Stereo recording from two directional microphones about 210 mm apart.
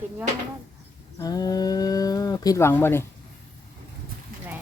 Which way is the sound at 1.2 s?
15° left (ahead or behind).